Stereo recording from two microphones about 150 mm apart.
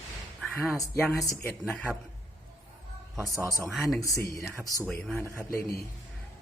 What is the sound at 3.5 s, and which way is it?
Speech, centre (ahead or behind).